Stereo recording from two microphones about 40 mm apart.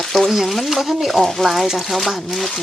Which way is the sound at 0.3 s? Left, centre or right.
Centre.